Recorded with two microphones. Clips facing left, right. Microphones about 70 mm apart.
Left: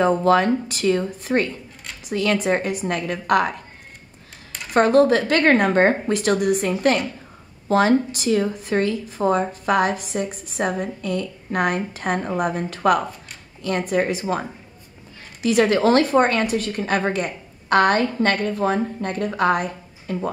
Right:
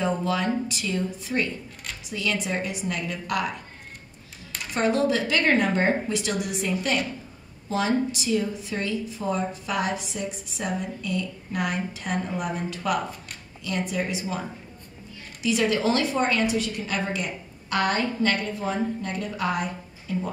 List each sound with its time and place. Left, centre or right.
0.0 s a woman's voice: left
4.7 s a woman's voice: left
15.4 s a woman's voice: left